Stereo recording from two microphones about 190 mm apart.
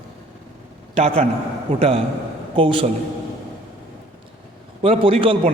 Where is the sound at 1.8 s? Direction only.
30° right (ahead or behind).